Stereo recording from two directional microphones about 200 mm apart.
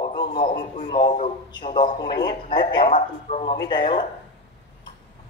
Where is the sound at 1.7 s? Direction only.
20° left (ahead or behind).